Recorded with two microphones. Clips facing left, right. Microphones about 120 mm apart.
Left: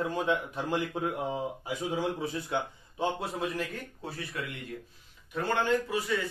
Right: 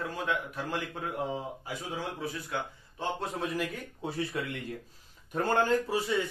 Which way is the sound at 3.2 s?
Centre (ahead or behind).